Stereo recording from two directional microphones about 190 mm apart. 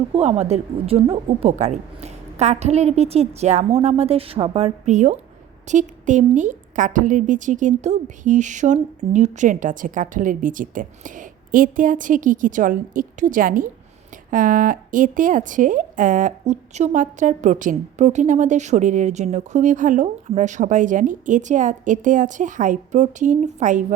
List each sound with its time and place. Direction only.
0.1 s a woman's voice: 35° right (ahead or behind)